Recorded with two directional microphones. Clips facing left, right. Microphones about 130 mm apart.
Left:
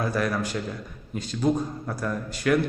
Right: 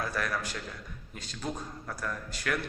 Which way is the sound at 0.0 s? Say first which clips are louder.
Left 7 dB; 20° left (ahead or behind).